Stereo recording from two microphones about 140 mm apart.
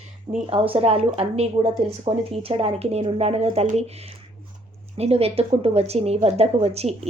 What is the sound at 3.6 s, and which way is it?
Speech, 60° right (ahead or behind).